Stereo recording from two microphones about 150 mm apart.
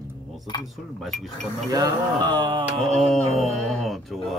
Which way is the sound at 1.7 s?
25° right (ahead or behind).